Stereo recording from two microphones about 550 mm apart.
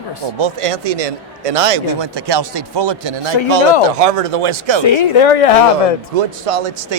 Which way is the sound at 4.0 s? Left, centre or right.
Right.